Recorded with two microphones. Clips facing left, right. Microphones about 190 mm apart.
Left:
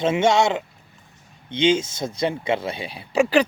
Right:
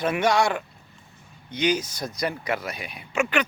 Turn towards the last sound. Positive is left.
turn(degrees=35)  # may be behind; listen again after turning